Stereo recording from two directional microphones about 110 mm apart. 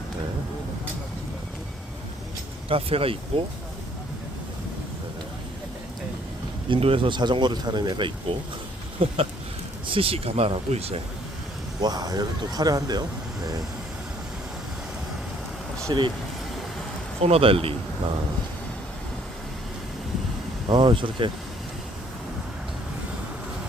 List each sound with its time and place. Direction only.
2.6 s speech: 60° right (ahead or behind)
6.7 s speech: 60° right (ahead or behind)
9.0 s speech: 55° right (ahead or behind)
11.8 s speech: 40° right (ahead or behind)
15.9 s speech: 45° right (ahead or behind)
17.2 s speech: 65° right (ahead or behind)
20.7 s speech: 45° right (ahead or behind)